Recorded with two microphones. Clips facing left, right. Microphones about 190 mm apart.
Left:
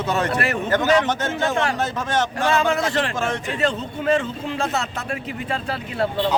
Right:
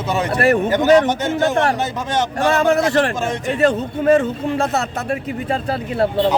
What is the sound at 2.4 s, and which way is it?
A man's voice, 45° right (ahead or behind).